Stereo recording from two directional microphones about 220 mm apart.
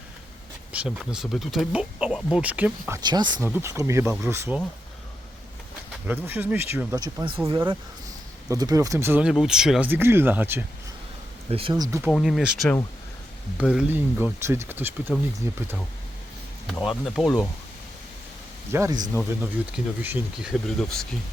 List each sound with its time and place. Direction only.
0.7 s speech: 5° right (ahead or behind)
3.0 s speech: 20° right (ahead or behind)
6.1 s speech: 10° right (ahead or behind)
11.5 s speech: 20° right (ahead or behind)
12.1 s speech: centre (ahead or behind)
16.6 s speech: centre (ahead or behind)
18.7 s speech: 10° right (ahead or behind)